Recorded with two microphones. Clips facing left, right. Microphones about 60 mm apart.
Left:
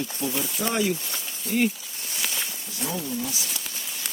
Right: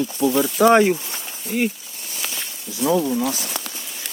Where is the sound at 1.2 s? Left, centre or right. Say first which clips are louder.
Right 1 dB; centre.